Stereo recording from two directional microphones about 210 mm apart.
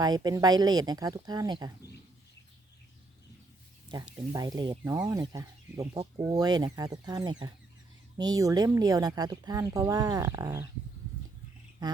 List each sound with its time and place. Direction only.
0.0 s speech: 20° right (ahead or behind)
3.9 s speech: 20° right (ahead or behind)
11.8 s speech: 20° right (ahead or behind)